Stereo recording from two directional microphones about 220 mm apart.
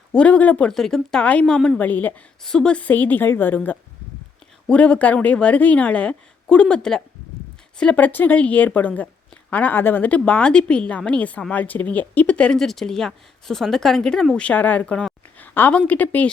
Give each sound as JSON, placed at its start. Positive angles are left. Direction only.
{"t": 0.1, "sound": "a woman's voice", "side_deg": 5}